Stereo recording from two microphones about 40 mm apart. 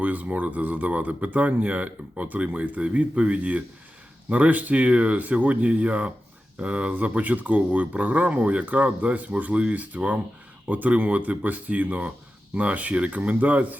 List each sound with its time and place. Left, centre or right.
0.0 s speech: right